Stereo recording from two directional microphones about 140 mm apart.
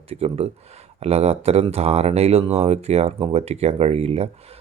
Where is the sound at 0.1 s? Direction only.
45° right (ahead or behind).